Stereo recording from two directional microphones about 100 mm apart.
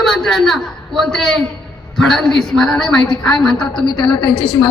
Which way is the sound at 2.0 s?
5° left (ahead or behind).